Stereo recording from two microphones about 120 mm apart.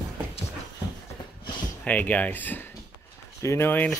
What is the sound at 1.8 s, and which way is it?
Speech, 10° left (ahead or behind).